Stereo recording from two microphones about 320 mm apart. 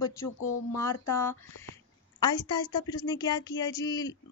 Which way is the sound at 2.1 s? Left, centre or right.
Centre.